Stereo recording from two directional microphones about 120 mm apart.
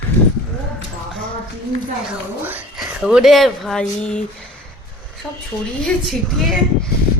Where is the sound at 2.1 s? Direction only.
15° right (ahead or behind).